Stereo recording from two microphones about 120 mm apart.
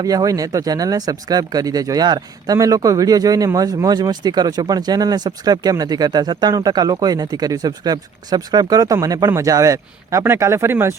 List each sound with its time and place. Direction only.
0.0 s speech: 30° right (ahead or behind)